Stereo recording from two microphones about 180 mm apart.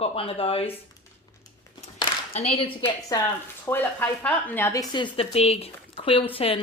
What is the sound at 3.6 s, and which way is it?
Speech, 10° left (ahead or behind).